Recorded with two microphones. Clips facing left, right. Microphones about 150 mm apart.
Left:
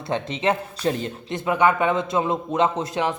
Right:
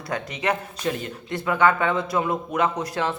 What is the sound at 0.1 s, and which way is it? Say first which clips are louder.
Speech: left 3 dB; 25° left (ahead or behind).